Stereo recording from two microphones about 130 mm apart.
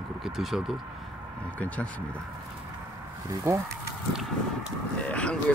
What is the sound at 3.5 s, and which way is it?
Speech, 20° right (ahead or behind).